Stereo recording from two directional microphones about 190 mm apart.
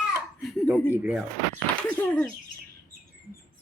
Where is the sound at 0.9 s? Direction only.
10° right (ahead or behind).